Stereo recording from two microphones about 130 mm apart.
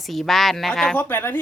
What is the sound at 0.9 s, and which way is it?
Speech, 15° left (ahead or behind).